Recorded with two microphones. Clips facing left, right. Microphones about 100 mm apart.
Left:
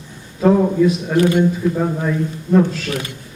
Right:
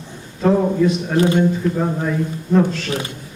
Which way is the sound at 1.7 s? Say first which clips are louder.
Left 1 dB; centre (ahead or behind).